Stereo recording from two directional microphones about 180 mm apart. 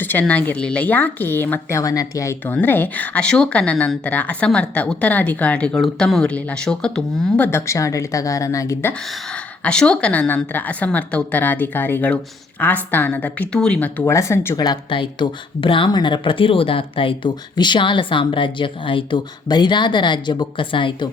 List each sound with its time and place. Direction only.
0.0 s speech: 10° left (ahead or behind)
8.9 s a woman's voice: 5° left (ahead or behind); by 21.1 s 25° left (ahead or behind)